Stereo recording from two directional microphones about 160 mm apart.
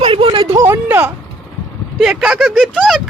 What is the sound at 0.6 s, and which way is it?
Speech, 15° right (ahead or behind).